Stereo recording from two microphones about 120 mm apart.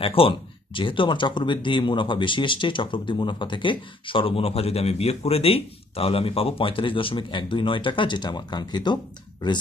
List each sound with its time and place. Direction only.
0.0 s speech: 50° left (ahead or behind)